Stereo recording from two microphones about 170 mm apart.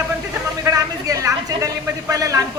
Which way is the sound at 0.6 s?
20° right (ahead or behind).